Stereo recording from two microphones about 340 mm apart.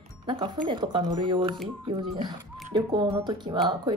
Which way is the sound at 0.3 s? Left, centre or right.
Centre.